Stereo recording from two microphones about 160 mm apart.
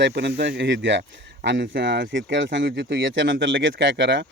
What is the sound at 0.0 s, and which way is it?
Speech, 90° right.